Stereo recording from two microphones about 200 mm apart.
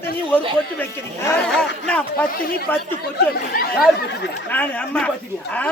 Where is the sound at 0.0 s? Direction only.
10° left (ahead or behind).